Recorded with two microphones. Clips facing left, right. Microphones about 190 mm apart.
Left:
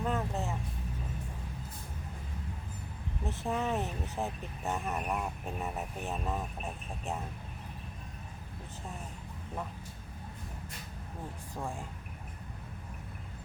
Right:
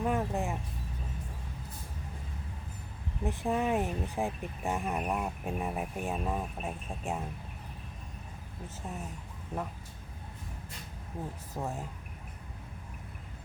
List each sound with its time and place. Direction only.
0.0 s music: 15° right (ahead or behind)
3.2 s speech: 15° right (ahead or behind)
11.5 s speech: 5° right (ahead or behind)